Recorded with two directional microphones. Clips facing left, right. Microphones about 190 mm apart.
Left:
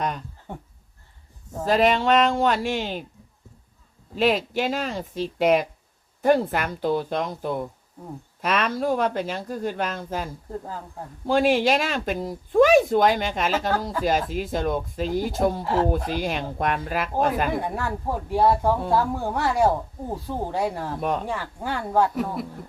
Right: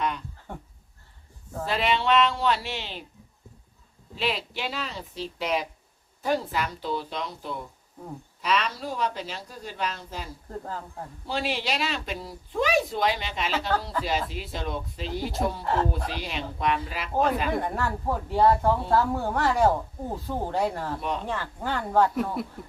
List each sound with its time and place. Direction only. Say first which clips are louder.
1.6 s speech: left 6 dB; 45° left (ahead or behind)
4.1 s speech: left 8 dB; 45° left (ahead or behind)
10.6 s speech: even; 10° left (ahead or behind)
11.3 s speech: left 10 dB; 50° left (ahead or behind)
15.6 s speech: left 3 dB; 5° left (ahead or behind)
16.0 s speech: left 6 dB; 50° left (ahead or behind)
17.5 s speech: left 1 dB; 5° left (ahead or behind)